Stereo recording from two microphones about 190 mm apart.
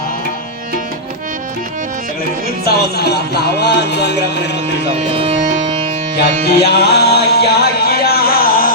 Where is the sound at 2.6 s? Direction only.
60° left (ahead or behind).